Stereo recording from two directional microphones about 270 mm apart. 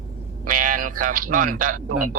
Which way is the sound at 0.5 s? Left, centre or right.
Right.